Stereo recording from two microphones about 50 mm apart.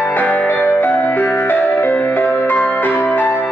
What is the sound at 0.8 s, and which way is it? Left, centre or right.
Music, left.